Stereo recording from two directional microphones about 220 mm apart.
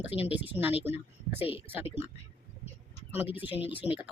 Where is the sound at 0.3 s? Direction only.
10° right (ahead or behind).